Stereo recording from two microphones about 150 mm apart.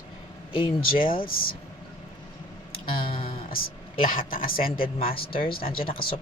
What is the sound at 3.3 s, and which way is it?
Music, 75° left (ahead or behind).